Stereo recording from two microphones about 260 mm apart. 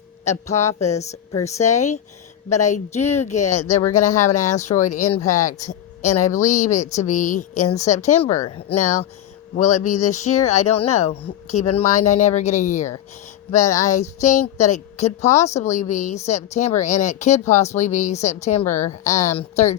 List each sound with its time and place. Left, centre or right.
0.3 s speech: left
1.3 s speech: centre
1.5 s speech: left
13.5 s speech: centre
14.2 s speech: left
18.6 s speech: centre
19.0 s speech: left